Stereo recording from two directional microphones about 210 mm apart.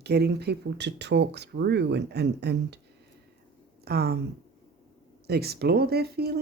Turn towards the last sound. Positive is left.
turn(degrees=-50)  # may be behind; listen again after turning